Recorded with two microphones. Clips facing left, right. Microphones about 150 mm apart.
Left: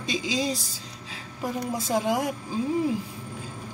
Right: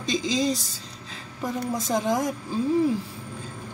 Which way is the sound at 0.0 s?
10° left (ahead or behind).